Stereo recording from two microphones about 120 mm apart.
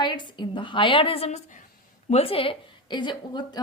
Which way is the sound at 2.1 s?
55° left (ahead or behind).